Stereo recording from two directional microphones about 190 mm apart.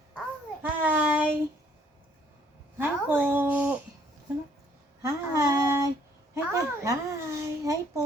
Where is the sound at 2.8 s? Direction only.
10° right (ahead or behind).